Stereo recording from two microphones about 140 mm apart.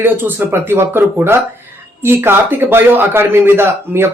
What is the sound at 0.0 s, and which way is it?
A man's voice, 15° right (ahead or behind).